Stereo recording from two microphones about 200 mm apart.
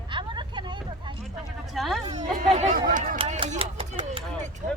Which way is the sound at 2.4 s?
35° right (ahead or behind).